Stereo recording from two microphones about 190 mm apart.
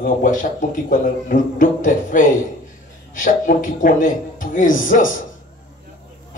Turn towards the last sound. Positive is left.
turn(degrees=45)  # may be behind; listen again after turning